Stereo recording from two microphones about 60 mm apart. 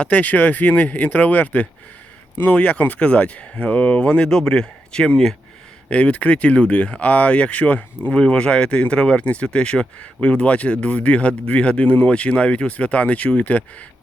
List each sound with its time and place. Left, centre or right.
0.0 s speech: left